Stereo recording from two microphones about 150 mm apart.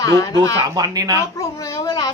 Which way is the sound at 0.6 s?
25° right (ahead or behind).